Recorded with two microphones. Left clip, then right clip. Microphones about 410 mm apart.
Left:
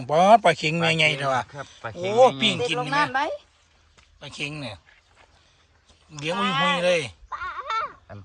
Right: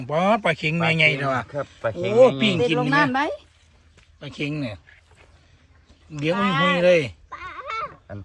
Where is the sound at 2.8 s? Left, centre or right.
Centre.